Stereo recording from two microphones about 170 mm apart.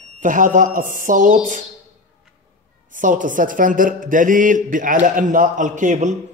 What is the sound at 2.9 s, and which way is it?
Speech, 50° right (ahead or behind).